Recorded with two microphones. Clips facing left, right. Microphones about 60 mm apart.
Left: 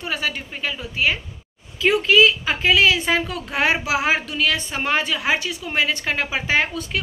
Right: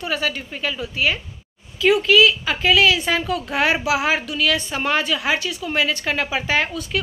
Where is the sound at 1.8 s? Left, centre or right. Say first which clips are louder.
Right 1 dB; left.